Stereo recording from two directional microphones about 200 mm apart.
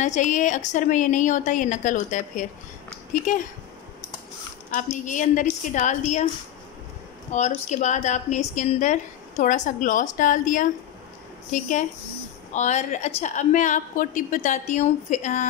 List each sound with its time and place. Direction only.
0.0 s a woman's voice: 35° left (ahead or behind)
4.7 s a woman's voice: 40° left (ahead or behind)
7.3 s a woman's voice: 35° left (ahead or behind)